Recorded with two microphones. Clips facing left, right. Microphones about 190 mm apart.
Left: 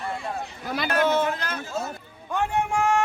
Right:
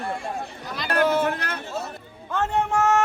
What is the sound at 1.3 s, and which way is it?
Speech, 60° right (ahead or behind).